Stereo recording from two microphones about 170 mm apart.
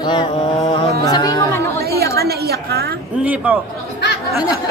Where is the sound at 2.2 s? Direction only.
70° right (ahead or behind).